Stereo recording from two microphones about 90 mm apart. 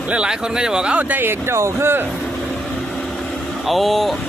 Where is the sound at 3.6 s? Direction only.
Centre (ahead or behind).